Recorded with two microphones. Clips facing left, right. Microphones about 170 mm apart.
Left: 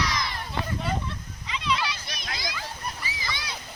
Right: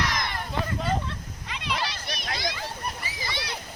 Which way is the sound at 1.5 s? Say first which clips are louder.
Left 4 dB; 55° right (ahead or behind).